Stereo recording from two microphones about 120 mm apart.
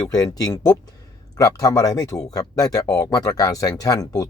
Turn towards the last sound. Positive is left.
turn(degrees=30)  # may be behind; listen again after turning